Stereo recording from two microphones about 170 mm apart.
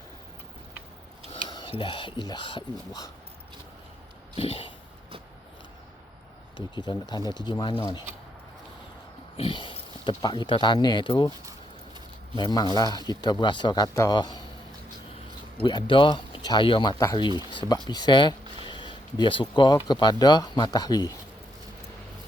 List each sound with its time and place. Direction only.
1.3 s speech: 30° left (ahead or behind)
4.4 s a sound: 35° left (ahead or behind)
6.7 s speech: 25° left (ahead or behind)
9.4 s speech: 30° left (ahead or behind)
12.4 s speech: 25° left (ahead or behind)
15.6 s speech: 30° left (ahead or behind)